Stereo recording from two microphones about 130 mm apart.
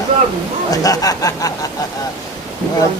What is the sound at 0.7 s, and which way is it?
Speech, 30° left (ahead or behind).